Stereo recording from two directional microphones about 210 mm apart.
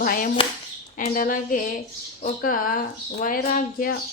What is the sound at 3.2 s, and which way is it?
Speech, 40° left (ahead or behind).